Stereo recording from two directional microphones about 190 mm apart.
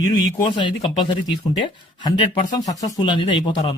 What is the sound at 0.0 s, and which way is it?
Speech, 25° left (ahead or behind).